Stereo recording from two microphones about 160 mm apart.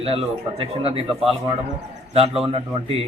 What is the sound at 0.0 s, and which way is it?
Speech, 35° right (ahead or behind).